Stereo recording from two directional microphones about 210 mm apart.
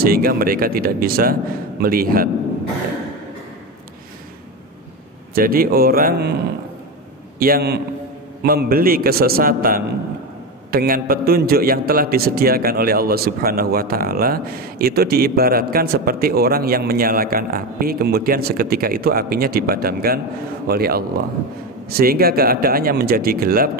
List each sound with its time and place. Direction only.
0.0 s a man's voice: 45° right (ahead or behind)
5.3 s a man's voice: 45° right (ahead or behind)
7.3 s a man's voice: 45° right (ahead or behind)